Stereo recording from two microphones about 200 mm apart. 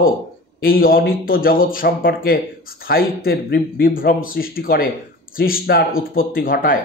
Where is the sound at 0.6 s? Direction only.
45° left (ahead or behind).